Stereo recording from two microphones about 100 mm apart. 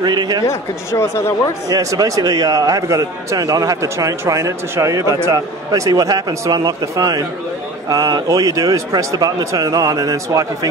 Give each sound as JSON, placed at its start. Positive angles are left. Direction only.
{"t": 0.0, "sound": "a man's voice", "side_deg": -45}
{"t": 0.5, "sound": "speech", "side_deg": 30}
{"t": 1.7, "sound": "a man's voice", "side_deg": -35}